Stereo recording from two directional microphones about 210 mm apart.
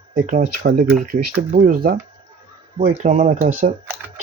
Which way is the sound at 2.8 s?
35° right (ahead or behind).